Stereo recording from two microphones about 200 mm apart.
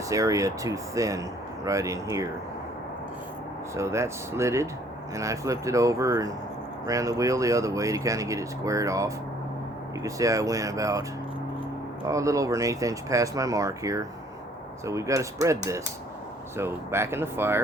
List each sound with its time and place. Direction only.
0.1 s speech: 15° right (ahead or behind)
3.8 s speech: 15° right (ahead or behind)
12.0 s speech: 15° right (ahead or behind)